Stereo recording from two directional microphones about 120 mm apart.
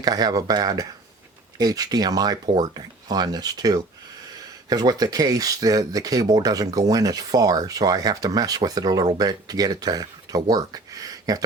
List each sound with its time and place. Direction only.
0.0 s speech: 35° right (ahead or behind)